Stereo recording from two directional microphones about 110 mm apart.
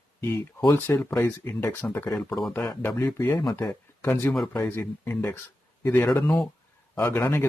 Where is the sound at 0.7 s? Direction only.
20° left (ahead or behind).